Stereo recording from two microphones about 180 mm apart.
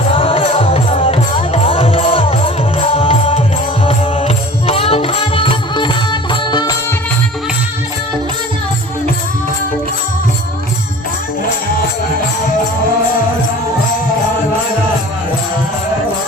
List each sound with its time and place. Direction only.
0.1 s music: 30° left (ahead or behind)